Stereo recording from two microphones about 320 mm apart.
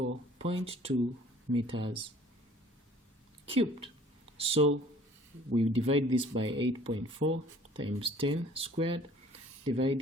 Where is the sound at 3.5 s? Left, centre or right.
Centre.